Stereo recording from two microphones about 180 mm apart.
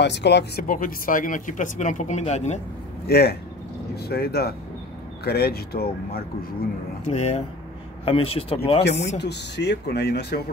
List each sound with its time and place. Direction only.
0.0 s speech: 70° left (ahead or behind)
0.7 s speech: 50° left (ahead or behind)
3.1 s speech: 65° left (ahead or behind)
7.1 s speech: 35° left (ahead or behind)
9.2 s speech: 70° left (ahead or behind)